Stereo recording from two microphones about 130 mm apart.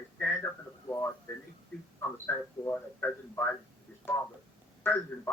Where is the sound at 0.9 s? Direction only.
20° left (ahead or behind).